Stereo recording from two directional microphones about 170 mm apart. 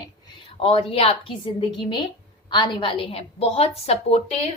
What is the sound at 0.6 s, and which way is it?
A woman's voice, 35° left (ahead or behind).